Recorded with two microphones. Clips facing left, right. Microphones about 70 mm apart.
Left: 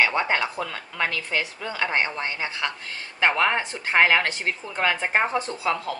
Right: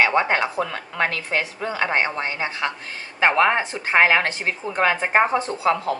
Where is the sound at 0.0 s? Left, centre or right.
Right.